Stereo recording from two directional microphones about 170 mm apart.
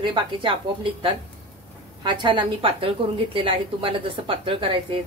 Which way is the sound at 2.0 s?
30° right (ahead or behind).